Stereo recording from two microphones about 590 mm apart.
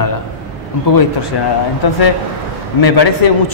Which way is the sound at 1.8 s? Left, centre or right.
Left.